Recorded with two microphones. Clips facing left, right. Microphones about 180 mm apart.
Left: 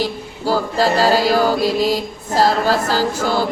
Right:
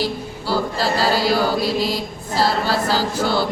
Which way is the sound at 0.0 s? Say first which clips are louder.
Left 3 dB; 40° left (ahead or behind).